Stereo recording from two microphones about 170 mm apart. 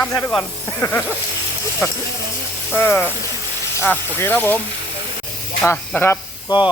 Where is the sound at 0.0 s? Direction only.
15° left (ahead or behind).